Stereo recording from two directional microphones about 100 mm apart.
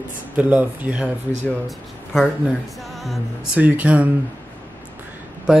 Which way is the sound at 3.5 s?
15° right (ahead or behind).